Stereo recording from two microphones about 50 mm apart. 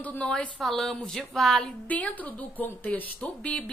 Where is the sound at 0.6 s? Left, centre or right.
Centre.